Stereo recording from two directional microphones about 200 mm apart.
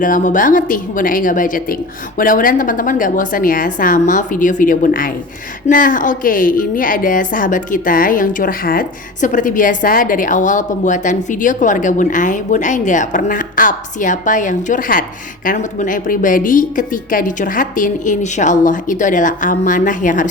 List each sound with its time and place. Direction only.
0.0 s a woman's voice: 40° left (ahead or behind)